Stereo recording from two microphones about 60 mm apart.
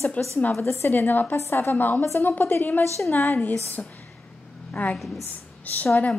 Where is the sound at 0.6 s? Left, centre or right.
Left.